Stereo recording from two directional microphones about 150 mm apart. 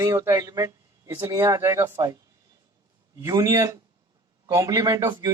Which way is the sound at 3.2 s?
20° right (ahead or behind).